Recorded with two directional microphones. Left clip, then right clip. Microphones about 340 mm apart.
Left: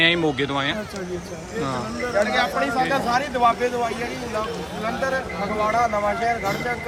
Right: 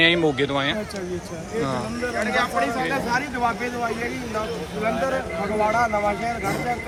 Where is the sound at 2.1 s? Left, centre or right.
Centre.